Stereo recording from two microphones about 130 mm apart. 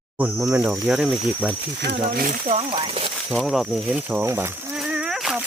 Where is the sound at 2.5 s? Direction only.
45° right (ahead or behind).